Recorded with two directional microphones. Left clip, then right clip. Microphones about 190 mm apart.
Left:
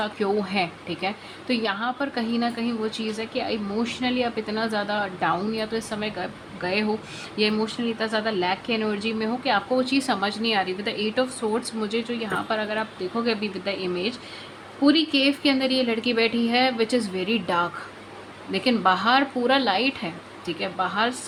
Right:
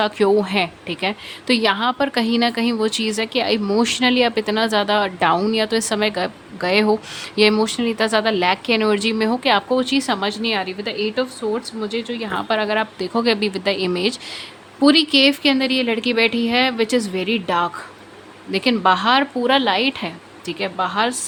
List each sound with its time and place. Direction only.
0.0 s a woman's voice: 30° right (ahead or behind)